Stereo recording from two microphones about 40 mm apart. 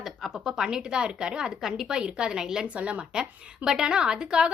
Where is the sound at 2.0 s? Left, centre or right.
Right.